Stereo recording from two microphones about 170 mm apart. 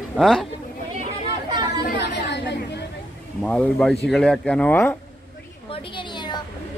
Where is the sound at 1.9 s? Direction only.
80° left.